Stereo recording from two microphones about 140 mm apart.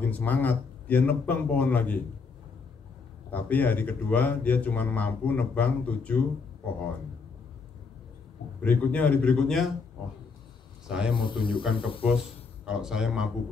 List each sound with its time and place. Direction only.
0.1 s speech: 10° left (ahead or behind)
3.3 s speech: 10° left (ahead or behind)
8.6 s speech: 10° left (ahead or behind)
10.9 s speech: 5° right (ahead or behind)
11.1 s speech: 35° left (ahead or behind)
12.6 s speech: 5° right (ahead or behind)